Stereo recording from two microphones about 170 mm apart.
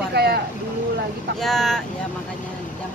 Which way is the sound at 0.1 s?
70° right (ahead or behind).